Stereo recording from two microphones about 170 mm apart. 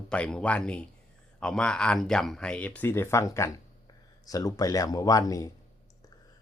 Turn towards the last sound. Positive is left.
turn(degrees=20)  # may be behind; listen again after turning